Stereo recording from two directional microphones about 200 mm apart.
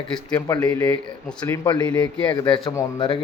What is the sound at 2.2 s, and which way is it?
Speech, 20° left (ahead or behind).